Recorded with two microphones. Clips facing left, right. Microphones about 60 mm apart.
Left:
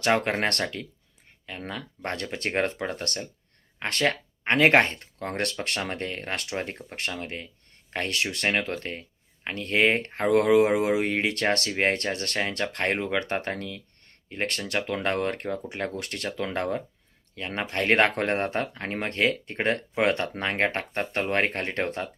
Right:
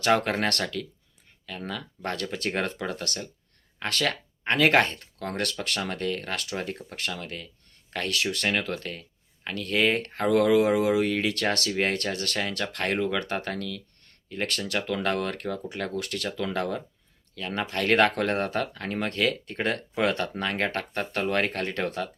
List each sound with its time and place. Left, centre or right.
0.0 s speech: left